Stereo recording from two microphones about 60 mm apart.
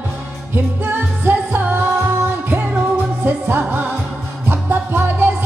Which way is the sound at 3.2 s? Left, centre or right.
Right.